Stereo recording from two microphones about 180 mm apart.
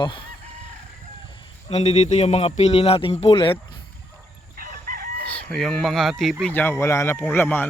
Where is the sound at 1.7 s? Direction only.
35° left (ahead or behind).